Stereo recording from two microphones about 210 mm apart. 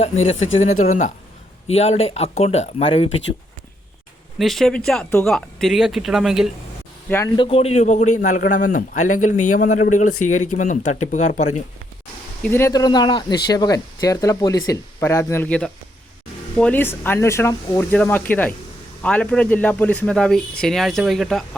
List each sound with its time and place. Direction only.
0.0 s a man's voice: 30° left (ahead or behind)
4.4 s a man's voice: centre (ahead or behind)
7.3 s a man's voice: 25° left (ahead or behind)
12.4 s a man's voice: 10° left (ahead or behind)